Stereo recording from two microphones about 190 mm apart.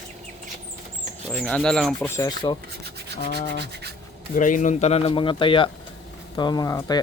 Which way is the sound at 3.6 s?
60° right (ahead or behind).